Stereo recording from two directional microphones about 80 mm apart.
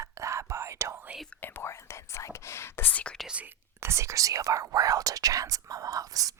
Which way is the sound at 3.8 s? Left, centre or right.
Right.